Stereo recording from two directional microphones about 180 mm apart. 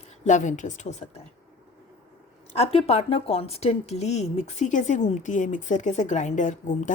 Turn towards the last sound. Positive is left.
turn(degrees=45)  # may be behind; listen again after turning